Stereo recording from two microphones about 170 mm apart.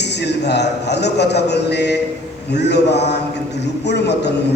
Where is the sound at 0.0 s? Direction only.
85° left.